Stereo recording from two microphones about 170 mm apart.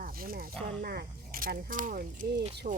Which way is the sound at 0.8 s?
60° right (ahead or behind).